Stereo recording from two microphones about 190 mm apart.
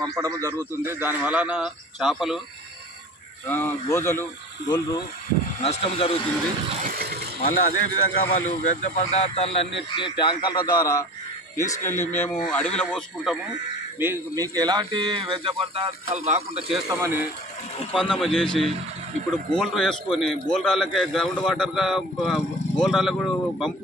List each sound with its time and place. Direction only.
0.0 s a man's voice: 15° right (ahead or behind)
3.4 s speech: 10° left (ahead or behind)
5.6 s speech: 35° left (ahead or behind)
6.8 s vehicle: 50° right (ahead or behind)
7.4 s speech: 50° left (ahead or behind); by 13.4 s centre (ahead or behind)
13.9 s speech: 10° right (ahead or behind); by 16.7 s 35° right (ahead or behind)
17.0 s a man's voice: 10° right (ahead or behind)
17.9 s a man's voice: centre (ahead or behind)